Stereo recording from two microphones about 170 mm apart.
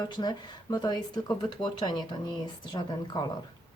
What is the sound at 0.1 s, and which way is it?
Speech, 25° left (ahead or behind).